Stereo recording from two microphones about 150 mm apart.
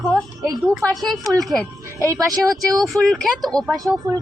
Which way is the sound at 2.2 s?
25° right (ahead or behind).